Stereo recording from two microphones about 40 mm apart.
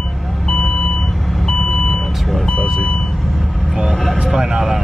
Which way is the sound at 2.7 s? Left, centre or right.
Centre.